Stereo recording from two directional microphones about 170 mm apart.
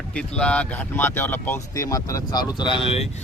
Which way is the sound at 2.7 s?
35° left (ahead or behind).